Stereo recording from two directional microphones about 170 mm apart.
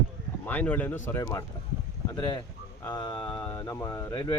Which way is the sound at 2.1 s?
25° left (ahead or behind).